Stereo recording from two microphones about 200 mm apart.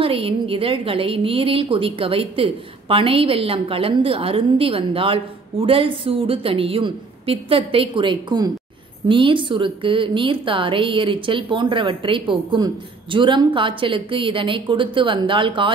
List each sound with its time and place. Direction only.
0.0 s a woman's voice: 25° right (ahead or behind)